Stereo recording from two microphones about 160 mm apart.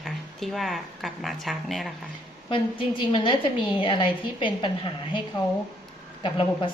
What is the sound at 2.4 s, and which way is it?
A woman's voice, 30° left (ahead or behind).